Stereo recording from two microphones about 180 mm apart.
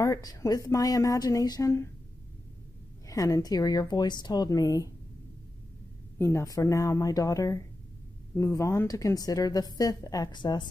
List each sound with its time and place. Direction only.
0.0 s a woman's voice: 20° left (ahead or behind)
3.1 s a woman's voice: 20° left (ahead or behind)
6.1 s a woman's voice: 15° left (ahead or behind)